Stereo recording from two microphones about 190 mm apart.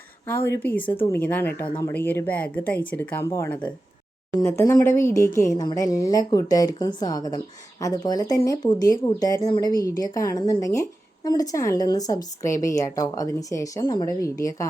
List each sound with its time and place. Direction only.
0.3 s a woman's voice: 15° left (ahead or behind)